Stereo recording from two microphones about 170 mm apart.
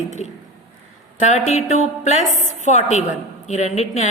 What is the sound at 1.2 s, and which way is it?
A woman's voice, 40° left (ahead or behind).